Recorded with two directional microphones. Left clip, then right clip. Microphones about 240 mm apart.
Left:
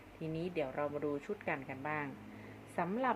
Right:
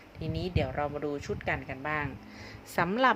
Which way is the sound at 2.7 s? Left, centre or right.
Right.